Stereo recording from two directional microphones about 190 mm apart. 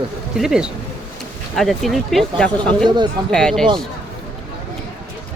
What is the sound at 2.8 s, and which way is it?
Speech, 25° right (ahead or behind).